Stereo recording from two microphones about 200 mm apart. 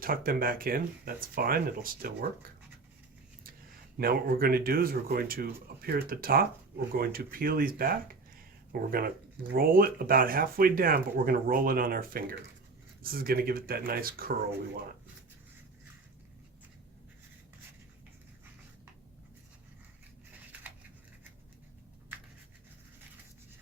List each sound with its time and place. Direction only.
0.0 s speech: 45° right (ahead or behind)
3.9 s speech: 45° right (ahead or behind)